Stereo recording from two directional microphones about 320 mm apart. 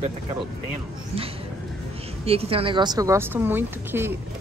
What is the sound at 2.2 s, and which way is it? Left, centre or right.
A woman's voice, centre.